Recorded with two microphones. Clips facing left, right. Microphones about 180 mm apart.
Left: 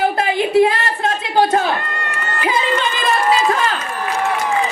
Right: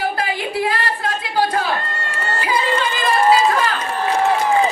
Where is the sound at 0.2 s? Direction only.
25° left (ahead or behind).